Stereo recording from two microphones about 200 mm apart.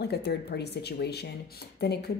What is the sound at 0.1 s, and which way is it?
A woman's voice, 55° left (ahead or behind).